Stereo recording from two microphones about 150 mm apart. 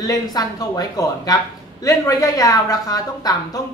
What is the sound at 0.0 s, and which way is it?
Speech, 25° left (ahead or behind).